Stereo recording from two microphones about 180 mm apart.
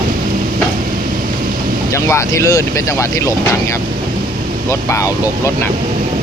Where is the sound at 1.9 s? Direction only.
15° left (ahead or behind).